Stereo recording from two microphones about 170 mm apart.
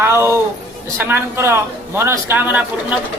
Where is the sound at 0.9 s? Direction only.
15° right (ahead or behind).